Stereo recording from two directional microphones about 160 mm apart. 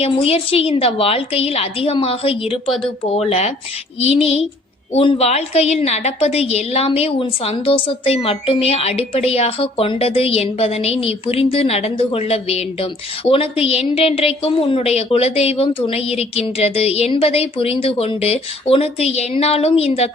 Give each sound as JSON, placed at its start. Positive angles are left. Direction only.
{"t": 0.0, "sound": "a woman's voice", "side_deg": 40}